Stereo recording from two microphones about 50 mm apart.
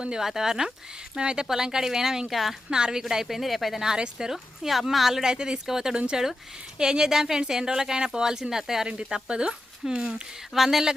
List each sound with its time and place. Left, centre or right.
0.2 s a woman's voice: centre
2.6 s a woman's voice: centre
5.3 s a woman's voice: centre
10.5 s speech: centre